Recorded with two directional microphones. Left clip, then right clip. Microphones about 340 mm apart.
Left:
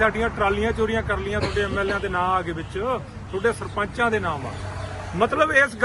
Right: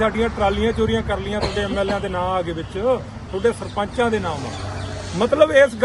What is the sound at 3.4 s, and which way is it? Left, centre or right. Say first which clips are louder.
Speech: right 3 dB; centre.